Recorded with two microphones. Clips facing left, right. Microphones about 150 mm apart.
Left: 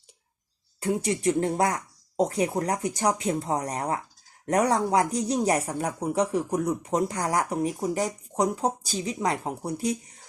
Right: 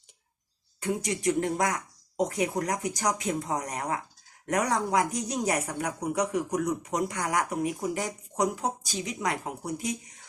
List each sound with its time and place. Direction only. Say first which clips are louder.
0.8 s speech: left 4 dB; 30° left (ahead or behind)